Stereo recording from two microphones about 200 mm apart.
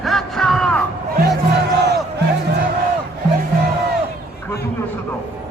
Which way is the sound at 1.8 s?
55° right (ahead or behind).